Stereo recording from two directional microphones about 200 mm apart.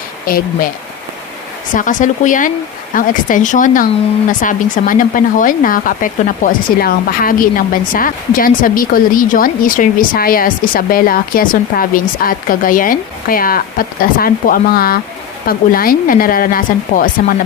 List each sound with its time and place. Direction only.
0.3 s speech: 45° left (ahead or behind)
1.7 s speech: 40° left (ahead or behind)